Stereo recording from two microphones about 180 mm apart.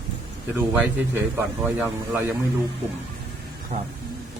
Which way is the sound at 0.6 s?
10° right (ahead or behind).